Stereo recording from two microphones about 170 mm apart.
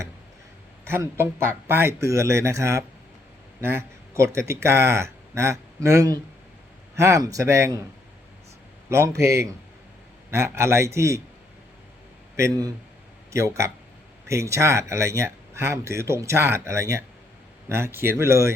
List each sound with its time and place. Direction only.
0.9 s a man's voice: 15° right (ahead or behind)
8.9 s speech: 15° right (ahead or behind)
12.4 s a man's voice: 25° right (ahead or behind)